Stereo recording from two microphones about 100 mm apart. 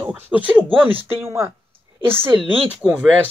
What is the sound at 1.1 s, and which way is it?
Speech, 25° right (ahead or behind).